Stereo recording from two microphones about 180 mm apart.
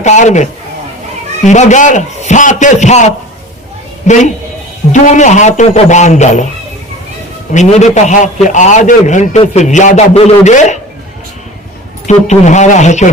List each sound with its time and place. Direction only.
0.0 s a man's voice: 40° left (ahead or behind)
1.5 s a man's voice: 40° left (ahead or behind)
7.5 s a man's voice: 40° left (ahead or behind)
12.0 s a man's voice: 40° left (ahead or behind)